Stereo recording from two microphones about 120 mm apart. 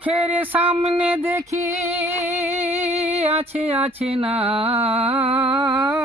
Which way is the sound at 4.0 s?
55° right (ahead or behind).